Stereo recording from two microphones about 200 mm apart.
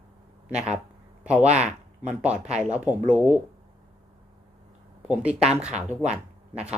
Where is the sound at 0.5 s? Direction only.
35° right (ahead or behind).